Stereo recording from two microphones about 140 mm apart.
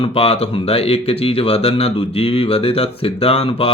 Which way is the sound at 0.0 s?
45° left (ahead or behind).